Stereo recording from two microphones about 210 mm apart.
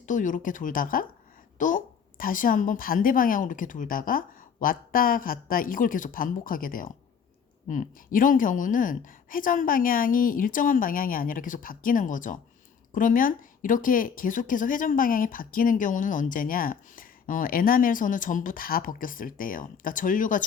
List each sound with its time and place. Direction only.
0.0 s a woman's voice: 40° left (ahead or behind)